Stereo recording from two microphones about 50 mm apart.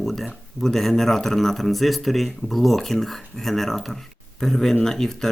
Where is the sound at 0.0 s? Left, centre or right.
Centre.